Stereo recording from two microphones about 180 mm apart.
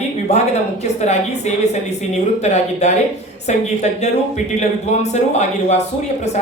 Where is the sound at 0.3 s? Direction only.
35° left (ahead or behind).